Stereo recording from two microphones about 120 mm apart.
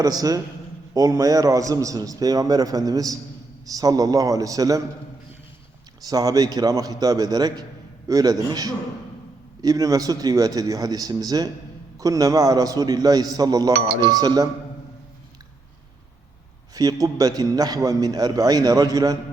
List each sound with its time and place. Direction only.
0.0 s a man's voice: 30° right (ahead or behind)
6.1 s a man's voice: 30° right (ahead or behind)
16.7 s a man's voice: 30° right (ahead or behind)